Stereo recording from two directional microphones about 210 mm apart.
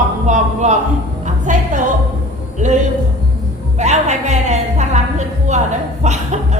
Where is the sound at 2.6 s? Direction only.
35° right (ahead or behind).